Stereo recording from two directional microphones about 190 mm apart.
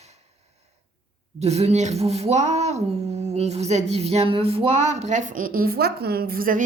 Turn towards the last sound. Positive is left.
turn(degrees=-45)  # may be behind; listen again after turning